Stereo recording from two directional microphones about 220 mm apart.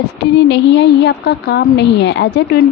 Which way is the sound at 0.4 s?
55° left (ahead or behind).